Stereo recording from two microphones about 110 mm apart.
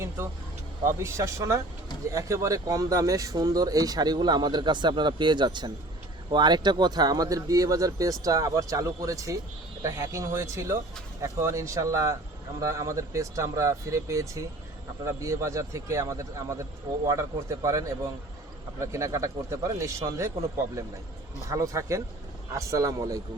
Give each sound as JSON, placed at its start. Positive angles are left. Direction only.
{"t": 0.9, "sound": "speech", "side_deg": -25}
{"t": 21.5, "sound": "speech", "side_deg": -30}